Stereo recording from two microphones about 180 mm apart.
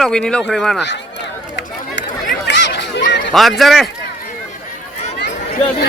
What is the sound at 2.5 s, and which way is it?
Chatter, 75° left (ahead or behind).